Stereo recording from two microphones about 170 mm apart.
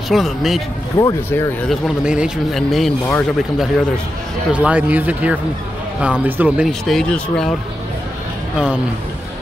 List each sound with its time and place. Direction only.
0.1 s speech: centre (ahead or behind)
0.9 s speech: 20° left (ahead or behind)
1.7 s speech: 5° right (ahead or behind)
4.5 s speech: 10° right (ahead or behind)